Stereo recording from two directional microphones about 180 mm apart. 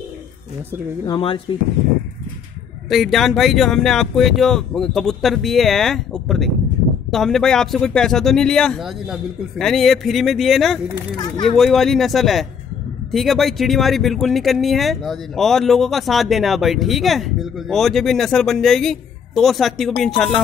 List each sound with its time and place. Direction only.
1.0 s speech: 30° left (ahead or behind)
2.9 s speech: centre (ahead or behind)